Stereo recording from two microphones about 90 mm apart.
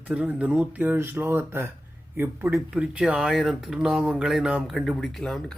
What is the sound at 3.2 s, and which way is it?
Speech, centre (ahead or behind).